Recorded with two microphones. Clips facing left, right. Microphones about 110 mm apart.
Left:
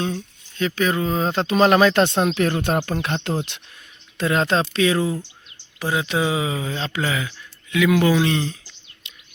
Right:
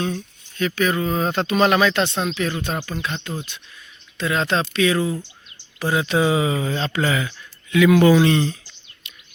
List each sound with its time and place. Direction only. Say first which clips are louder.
0.0 s speech: even; 25° left (ahead or behind); by 3.2 s 60° left (ahead or behind)
3.2 s speech: left 6 dB; 75° left (ahead or behind)
4.2 s speech: left 2 dB; 40° left (ahead or behind)
5.8 s speech: right 2 dB; 15° left (ahead or behind)
9.0 s a sound: right 1 dB; 20° left (ahead or behind)